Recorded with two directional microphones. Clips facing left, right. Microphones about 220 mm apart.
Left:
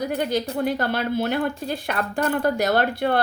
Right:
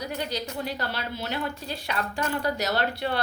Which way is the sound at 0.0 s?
50° left (ahead or behind).